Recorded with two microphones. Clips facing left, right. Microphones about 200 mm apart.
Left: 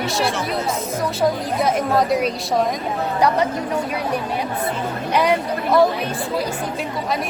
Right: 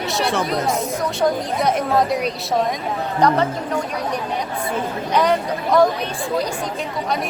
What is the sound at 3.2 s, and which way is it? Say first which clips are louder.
Speech: right 1 dB; 15° left (ahead or behind).